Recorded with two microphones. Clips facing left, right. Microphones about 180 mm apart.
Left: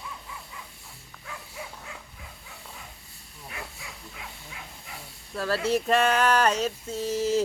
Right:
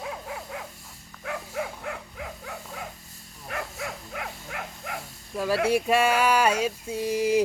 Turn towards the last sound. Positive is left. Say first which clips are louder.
# right 2 dB
turn(degrees=-15)  # may be behind; listen again after turning